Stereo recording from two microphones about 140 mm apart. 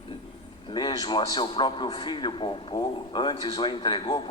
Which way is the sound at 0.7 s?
35° left (ahead or behind).